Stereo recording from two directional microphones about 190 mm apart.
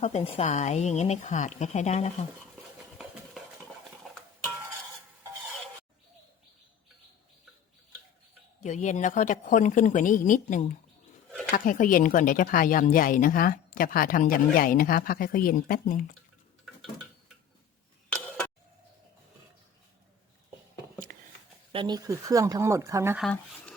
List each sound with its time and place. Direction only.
0.0 s a woman's voice: 35° left (ahead or behind)
2.8 s a sound: centre (ahead or behind)
8.6 s a woman's voice: 40° left (ahead or behind)
21.1 s a sound: 50° right (ahead or behind)
21.7 s speech: 25° right (ahead or behind)
23.1 s speech: 5° left (ahead or behind)